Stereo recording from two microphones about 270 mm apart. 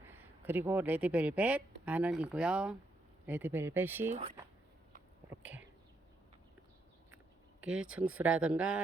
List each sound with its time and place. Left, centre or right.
0.0 s speech: centre
5.3 s a sound: centre
7.8 s speech: right
8.2 s speech: centre